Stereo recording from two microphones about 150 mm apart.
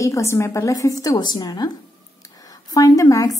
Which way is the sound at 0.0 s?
20° left (ahead or behind).